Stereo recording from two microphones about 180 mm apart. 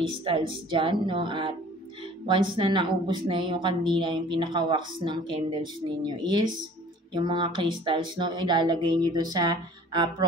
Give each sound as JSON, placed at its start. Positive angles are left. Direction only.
{"t": 0.0, "sound": "a woman's voice", "side_deg": -30}